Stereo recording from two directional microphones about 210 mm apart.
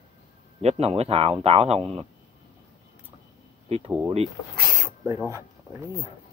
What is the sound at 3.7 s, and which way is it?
Speech, 30° right (ahead or behind).